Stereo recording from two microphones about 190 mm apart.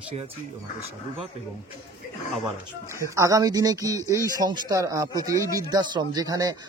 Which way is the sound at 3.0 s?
15° right (ahead or behind).